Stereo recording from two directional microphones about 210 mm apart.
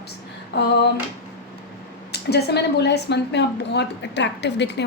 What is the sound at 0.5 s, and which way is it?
Speech, 55° left (ahead or behind).